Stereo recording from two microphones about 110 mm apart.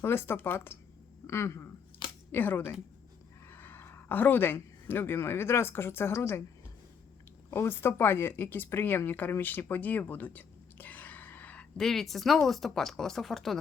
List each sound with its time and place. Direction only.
0.0 s speech: 20° left (ahead or behind)
7.5 s speech: 20° left (ahead or behind); by 13.6 s centre (ahead or behind)